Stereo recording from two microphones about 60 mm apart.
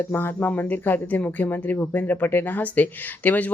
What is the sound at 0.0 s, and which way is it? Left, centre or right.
Speech, left.